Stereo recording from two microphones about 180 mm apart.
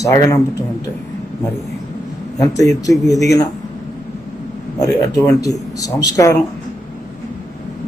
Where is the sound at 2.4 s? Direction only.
20° left (ahead or behind).